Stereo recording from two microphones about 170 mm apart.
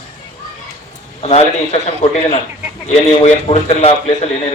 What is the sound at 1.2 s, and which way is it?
A man's voice, 40° left (ahead or behind).